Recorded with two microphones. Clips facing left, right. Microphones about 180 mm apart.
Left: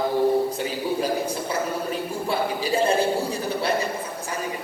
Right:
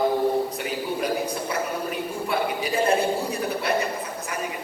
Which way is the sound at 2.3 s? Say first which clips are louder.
Left 1 dB; 30° left (ahead or behind).